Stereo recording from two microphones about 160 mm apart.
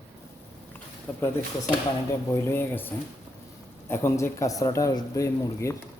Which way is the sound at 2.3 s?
15° left (ahead or behind).